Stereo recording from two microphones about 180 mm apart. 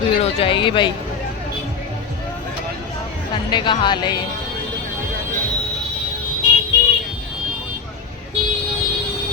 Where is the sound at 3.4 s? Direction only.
25° left (ahead or behind).